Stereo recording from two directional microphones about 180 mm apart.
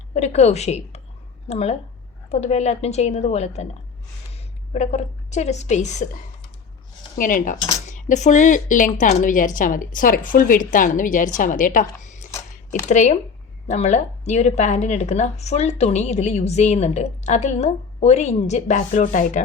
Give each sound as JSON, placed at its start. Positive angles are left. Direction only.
{"t": 0.1, "sound": "a woman's voice", "side_deg": 40}
{"t": 7.2, "sound": "a woman's voice", "side_deg": 50}